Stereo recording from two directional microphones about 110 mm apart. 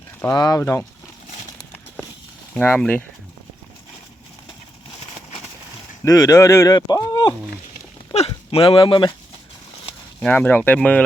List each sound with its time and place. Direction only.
0.3 s speech: 35° left (ahead or behind)
2.6 s speech: 10° left (ahead or behind)
6.1 s speech: 30° left (ahead or behind)
6.7 s speech: 40° left (ahead or behind)
8.1 s speech: 65° left (ahead or behind)
10.2 s speech: 10° left (ahead or behind)